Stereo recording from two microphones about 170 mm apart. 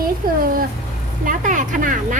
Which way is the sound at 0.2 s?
60° right (ahead or behind).